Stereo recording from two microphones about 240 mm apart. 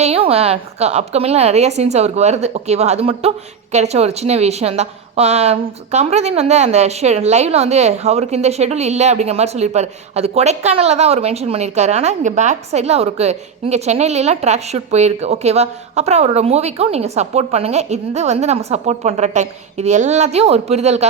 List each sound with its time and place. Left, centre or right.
0.0 s a woman's voice: right